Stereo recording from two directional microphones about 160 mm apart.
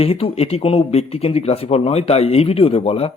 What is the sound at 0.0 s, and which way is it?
Speech, 35° left (ahead or behind).